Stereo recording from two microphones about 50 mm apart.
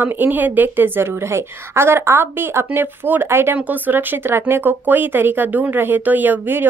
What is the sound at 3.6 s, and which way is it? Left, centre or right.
A woman's voice, right.